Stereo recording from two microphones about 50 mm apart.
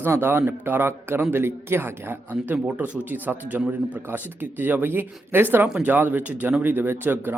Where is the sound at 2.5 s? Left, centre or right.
Right.